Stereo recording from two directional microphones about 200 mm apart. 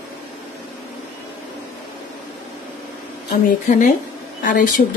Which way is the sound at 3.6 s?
40° left (ahead or behind).